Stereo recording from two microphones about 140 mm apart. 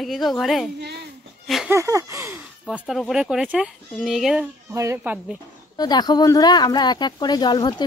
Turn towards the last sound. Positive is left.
turn(degrees=30)  # may be behind; listen again after turning